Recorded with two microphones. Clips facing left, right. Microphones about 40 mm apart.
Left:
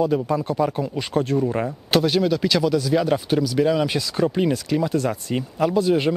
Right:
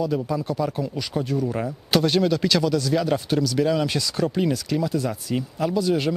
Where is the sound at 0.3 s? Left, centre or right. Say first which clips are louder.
Left 3 dB; left.